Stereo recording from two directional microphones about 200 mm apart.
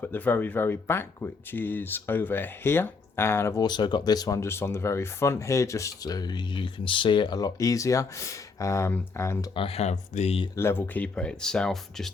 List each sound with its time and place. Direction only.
0.0 s speech: 10° left (ahead or behind)
9.6 s speech: 30° left (ahead or behind)
10.5 s speech: 10° left (ahead or behind)